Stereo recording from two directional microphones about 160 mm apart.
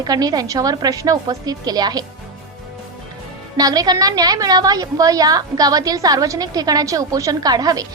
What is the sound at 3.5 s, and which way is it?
A woman's voice, 25° right (ahead or behind).